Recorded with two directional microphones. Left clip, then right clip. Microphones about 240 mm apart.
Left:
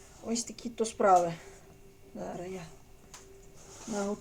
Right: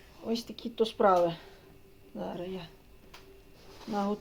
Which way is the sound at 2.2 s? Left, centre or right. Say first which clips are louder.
Right 2 dB; centre.